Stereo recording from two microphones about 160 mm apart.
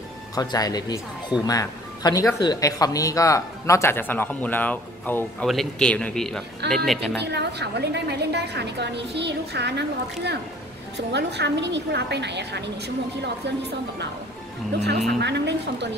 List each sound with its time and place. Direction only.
0.4 s speech: 25° left (ahead or behind); by 7.2 s centre (ahead or behind)
7.2 s a woman's voice: 90° right
15.1 s a woman's voice: 90° right